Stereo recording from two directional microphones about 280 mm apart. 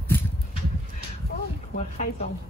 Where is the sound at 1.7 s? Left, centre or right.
Left.